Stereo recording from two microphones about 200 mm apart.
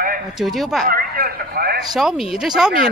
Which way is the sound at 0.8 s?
45° right (ahead or behind).